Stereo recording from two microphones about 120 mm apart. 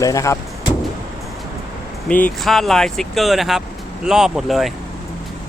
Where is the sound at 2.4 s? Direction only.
Centre (ahead or behind).